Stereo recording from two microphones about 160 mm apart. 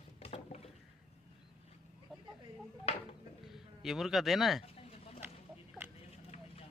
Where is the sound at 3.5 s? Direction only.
Centre (ahead or behind).